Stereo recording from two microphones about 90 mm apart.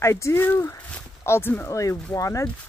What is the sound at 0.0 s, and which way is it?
Speech, 30° left (ahead or behind).